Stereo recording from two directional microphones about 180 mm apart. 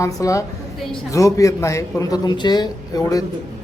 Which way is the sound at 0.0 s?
15° left (ahead or behind).